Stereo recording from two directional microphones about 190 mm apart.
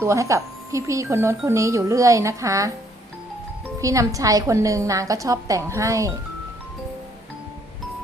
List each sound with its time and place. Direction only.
0.0 s a woman's voice: 15° right (ahead or behind)
3.8 s a woman's voice: 15° right (ahead or behind)